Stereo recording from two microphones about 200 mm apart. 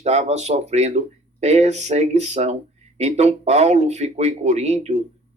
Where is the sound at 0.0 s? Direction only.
35° right (ahead or behind).